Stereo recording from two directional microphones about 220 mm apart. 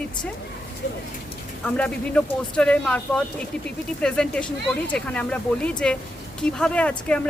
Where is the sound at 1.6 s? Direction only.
5° left (ahead or behind).